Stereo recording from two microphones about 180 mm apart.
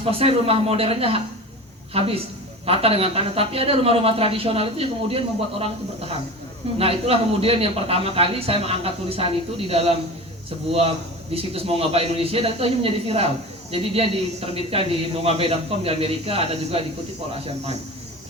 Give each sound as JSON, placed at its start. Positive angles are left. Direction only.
{"t": 0.0, "sound": "a man's voice", "side_deg": -30}